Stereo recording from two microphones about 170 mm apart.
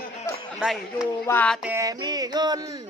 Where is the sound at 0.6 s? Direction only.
Centre (ahead or behind).